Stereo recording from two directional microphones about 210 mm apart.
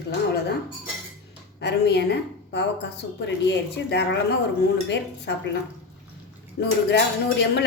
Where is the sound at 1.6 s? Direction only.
50° left (ahead or behind).